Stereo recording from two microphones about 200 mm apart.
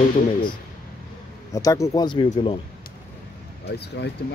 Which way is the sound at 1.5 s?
15° left (ahead or behind).